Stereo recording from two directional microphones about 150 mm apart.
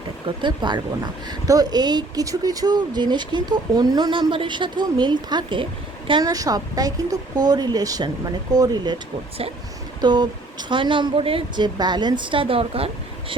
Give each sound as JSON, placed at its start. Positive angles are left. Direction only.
{"t": 0.4, "sound": "speech", "side_deg": -30}
{"t": 10.0, "sound": "a woman's voice", "side_deg": -30}